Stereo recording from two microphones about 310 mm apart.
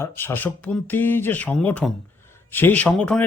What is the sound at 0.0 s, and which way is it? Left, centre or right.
Speech, centre.